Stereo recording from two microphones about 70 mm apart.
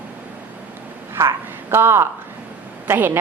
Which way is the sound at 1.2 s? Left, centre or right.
Right.